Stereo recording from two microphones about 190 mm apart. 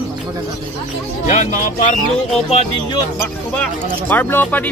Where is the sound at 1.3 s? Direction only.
40° left (ahead or behind).